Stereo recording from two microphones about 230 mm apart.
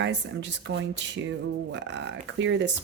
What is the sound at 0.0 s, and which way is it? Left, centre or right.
Speech, right.